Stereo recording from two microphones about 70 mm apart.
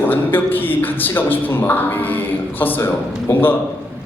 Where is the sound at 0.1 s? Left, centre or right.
Left.